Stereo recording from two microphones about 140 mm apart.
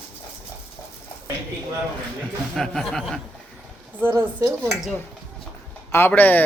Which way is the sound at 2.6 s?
Centre (ahead or behind).